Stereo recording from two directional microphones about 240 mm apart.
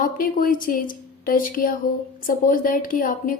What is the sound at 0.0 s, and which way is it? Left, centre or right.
Speech, left.